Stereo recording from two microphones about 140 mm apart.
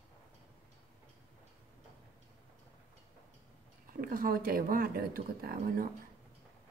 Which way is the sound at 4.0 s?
90° right.